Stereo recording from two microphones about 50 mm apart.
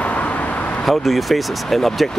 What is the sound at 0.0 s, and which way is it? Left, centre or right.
Vehicle, left.